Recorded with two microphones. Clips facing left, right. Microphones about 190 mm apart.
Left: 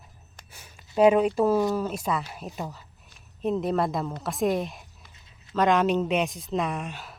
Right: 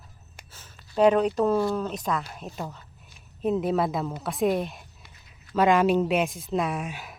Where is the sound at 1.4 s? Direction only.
10° left (ahead or behind).